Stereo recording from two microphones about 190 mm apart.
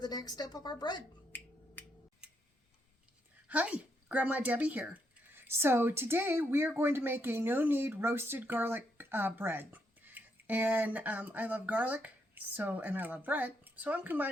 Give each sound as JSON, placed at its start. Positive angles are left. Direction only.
{"t": 0.0, "sound": "a woman's voice", "side_deg": 20}
{"t": 1.3, "sound": "a sound", "side_deg": 10}
{"t": 3.5, "sound": "a woman's voice", "side_deg": -10}